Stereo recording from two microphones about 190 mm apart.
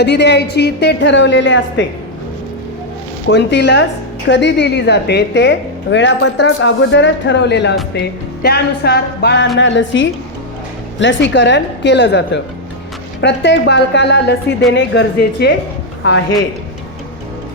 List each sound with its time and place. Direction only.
0.0 s a woman's voice: 65° left (ahead or behind)
3.2 s a woman's voice: 65° left (ahead or behind)
9.6 s a woman's voice: 75° left (ahead or behind)